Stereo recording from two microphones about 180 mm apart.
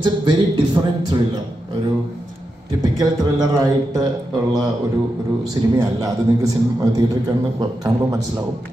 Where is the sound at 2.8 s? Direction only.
20° right (ahead or behind).